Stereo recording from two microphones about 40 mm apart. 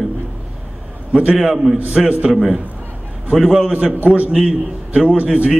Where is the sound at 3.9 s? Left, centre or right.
Right.